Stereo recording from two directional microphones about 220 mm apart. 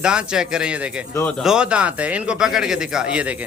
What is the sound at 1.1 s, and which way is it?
Speech, 10° left (ahead or behind).